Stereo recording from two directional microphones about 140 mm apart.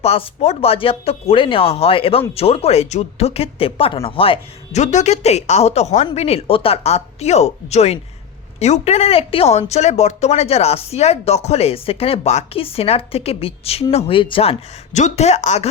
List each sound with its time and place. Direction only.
0.0 s speech: 45° left (ahead or behind)
14.9 s speech: 55° left (ahead or behind)